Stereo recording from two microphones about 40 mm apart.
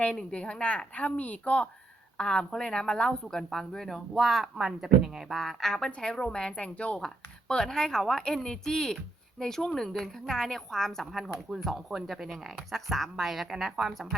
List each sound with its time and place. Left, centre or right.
0.1 s a woman's voice: left
2.1 s a woman's voice: centre
4.5 s speech: centre
5.9 s a woman's voice: left
7.0 s a woman's voice: centre
11.0 s speech: centre